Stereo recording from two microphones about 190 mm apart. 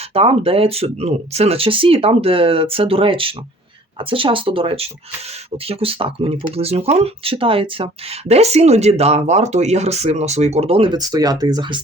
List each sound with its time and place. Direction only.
0.1 s speech: 30° right (ahead or behind)